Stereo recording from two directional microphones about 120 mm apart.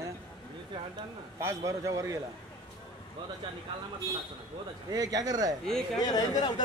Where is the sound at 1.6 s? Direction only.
25° right (ahead or behind).